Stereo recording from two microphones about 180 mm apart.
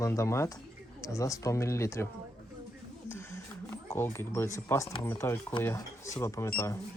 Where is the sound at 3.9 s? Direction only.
15° left (ahead or behind).